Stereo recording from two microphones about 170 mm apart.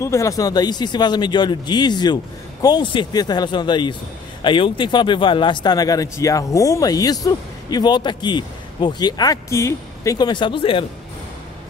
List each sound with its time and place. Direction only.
0.0 s speech: 20° left (ahead or behind)